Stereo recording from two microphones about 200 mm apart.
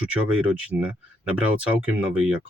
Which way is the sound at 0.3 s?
5° right (ahead or behind).